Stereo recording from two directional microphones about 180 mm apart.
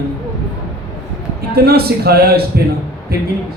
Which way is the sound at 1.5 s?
60° right (ahead or behind).